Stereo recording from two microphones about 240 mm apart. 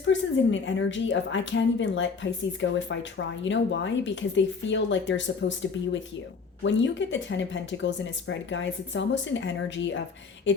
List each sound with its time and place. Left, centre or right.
0.0 s speech: left